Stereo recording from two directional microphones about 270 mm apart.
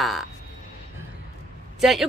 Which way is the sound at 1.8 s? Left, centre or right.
Centre.